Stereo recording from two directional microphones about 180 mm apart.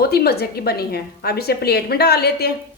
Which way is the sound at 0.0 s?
60° left (ahead or behind).